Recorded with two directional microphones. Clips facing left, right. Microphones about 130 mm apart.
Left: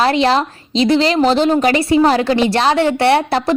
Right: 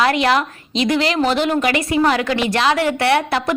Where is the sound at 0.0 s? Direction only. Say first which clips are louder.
Left 2 dB; 30° left (ahead or behind).